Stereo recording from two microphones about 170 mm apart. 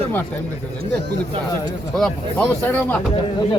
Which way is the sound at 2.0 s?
5° left (ahead or behind).